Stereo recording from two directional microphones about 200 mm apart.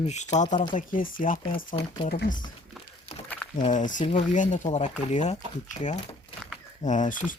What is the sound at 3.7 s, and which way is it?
Speech, 40° left (ahead or behind).